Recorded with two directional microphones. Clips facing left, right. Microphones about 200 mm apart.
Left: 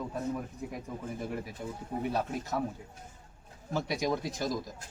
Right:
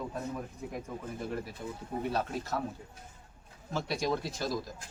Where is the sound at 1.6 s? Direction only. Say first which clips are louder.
Left 1 dB; 10° left (ahead or behind).